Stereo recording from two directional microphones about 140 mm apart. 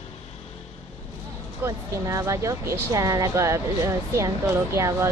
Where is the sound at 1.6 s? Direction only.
20° right (ahead or behind).